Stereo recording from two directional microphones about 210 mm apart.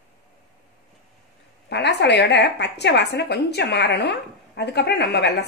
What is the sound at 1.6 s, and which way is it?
A woman's voice, 55° left (ahead or behind).